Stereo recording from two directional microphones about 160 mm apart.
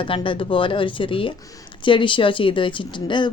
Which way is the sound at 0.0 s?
30° left (ahead or behind).